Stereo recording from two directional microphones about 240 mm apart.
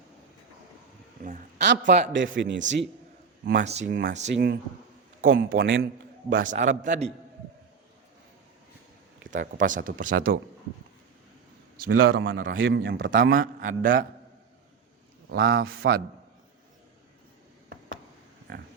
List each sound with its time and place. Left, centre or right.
1.2 s a man's voice: right
2.1 s a man's voice: right
5.3 s a man's voice: right
6.3 s a man's voice: right
9.3 s a man's voice: right
11.9 s a man's voice: right
12.5 s a man's voice: right
13.3 s a man's voice: right
15.4 s a man's voice: right